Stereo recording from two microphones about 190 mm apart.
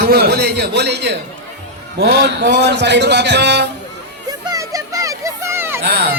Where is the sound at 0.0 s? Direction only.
55° right (ahead or behind).